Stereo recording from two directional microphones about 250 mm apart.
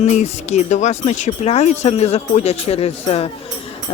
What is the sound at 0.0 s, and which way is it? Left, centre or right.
Speech, left.